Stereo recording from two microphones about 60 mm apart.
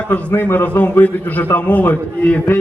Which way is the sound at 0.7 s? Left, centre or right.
Left.